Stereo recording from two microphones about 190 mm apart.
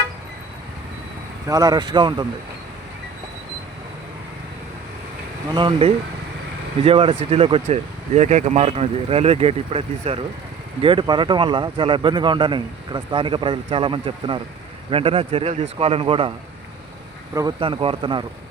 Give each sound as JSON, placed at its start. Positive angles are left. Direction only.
{"t": 1.5, "sound": "speech", "side_deg": -20}
{"t": 5.5, "sound": "speech", "side_deg": -25}
{"t": 17.3, "sound": "speech", "side_deg": -25}